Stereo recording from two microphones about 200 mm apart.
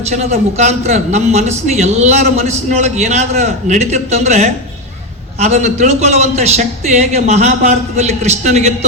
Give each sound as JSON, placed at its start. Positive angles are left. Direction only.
{"t": 0.1, "sound": "a man's voice", "side_deg": -35}